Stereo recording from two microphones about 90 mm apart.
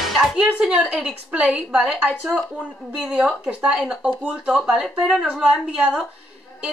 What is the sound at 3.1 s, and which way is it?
Speech, 15° right (ahead or behind).